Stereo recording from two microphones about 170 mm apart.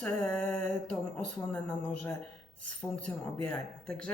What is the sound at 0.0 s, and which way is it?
Speech, 5° left (ahead or behind).